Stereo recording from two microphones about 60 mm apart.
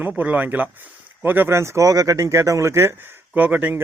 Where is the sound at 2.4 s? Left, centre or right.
Right.